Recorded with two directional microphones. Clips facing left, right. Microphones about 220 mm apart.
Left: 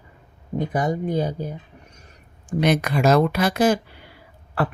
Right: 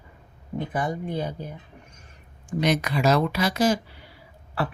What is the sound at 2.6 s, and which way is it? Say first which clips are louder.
A woman's voice: left 3 dB; 55° left (ahead or behind).